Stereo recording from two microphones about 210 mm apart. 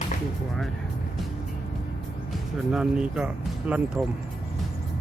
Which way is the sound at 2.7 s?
5° right (ahead or behind).